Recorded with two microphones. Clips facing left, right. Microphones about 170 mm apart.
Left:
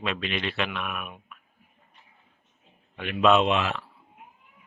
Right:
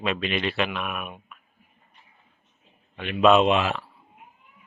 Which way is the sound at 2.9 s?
5° left (ahead or behind).